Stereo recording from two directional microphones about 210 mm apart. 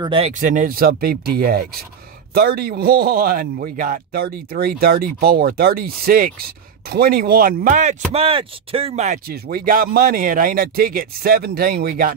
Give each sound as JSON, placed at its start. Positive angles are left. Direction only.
{"t": 0.0, "sound": "speech", "side_deg": -25}
{"t": 0.4, "sound": "a man's voice", "side_deg": -35}
{"t": 9.3, "sound": "a man's voice", "side_deg": -45}